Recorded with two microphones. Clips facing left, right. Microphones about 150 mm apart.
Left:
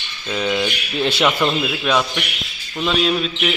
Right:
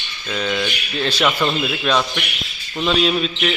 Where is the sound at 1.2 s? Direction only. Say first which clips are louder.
Even; 5° left (ahead or behind).